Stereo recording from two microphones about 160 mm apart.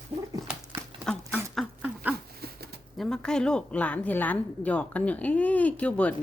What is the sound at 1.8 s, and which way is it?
Dog, 10° right (ahead or behind).